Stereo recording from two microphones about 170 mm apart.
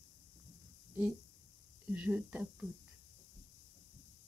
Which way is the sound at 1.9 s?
10° right (ahead or behind).